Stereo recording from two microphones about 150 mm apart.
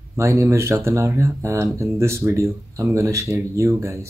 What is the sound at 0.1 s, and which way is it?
Speech, 20° right (ahead or behind).